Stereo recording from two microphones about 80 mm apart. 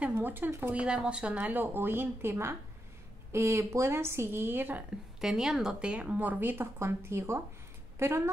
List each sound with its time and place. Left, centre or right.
0.1 s speech: right
0.7 s speech: centre
5.2 s speech: centre; by 7.4 s right